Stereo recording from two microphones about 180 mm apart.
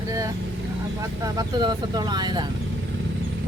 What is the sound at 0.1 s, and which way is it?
Vehicle, 20° right (ahead or behind).